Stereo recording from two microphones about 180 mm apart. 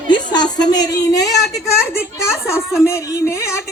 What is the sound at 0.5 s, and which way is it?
A woman's voice, 20° left (ahead or behind).